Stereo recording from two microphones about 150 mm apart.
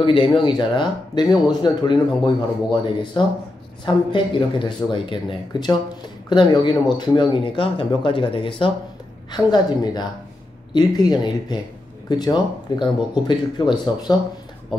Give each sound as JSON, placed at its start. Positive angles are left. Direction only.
{"t": 0.0, "sound": "speech", "side_deg": 35}